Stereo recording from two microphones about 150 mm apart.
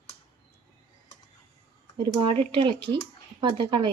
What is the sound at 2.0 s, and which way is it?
Speech, 35° right (ahead or behind).